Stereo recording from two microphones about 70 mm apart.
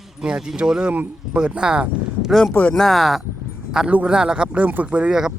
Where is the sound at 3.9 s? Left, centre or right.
Centre.